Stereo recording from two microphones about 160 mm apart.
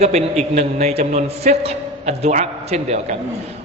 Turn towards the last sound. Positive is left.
turn(degrees=-45)  # may be behind; listen again after turning